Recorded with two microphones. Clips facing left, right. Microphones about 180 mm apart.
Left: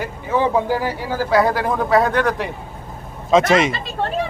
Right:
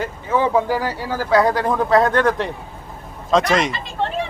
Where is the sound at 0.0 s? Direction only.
15° left (ahead or behind).